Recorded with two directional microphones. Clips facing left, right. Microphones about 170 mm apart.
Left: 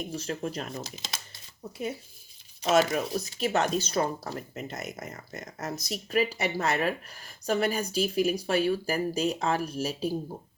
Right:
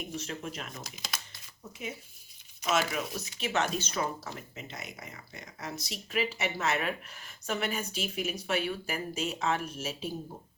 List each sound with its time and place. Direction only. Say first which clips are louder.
0.1 s speech: left 5 dB; 35° left (ahead or behind)
2.6 s speech: left 6 dB; 40° left (ahead or behind)